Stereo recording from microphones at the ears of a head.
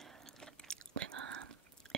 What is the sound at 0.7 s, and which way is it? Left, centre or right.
Whispering, right.